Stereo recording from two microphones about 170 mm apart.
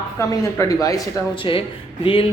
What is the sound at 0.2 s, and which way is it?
A woman's voice, 15° left (ahead or behind).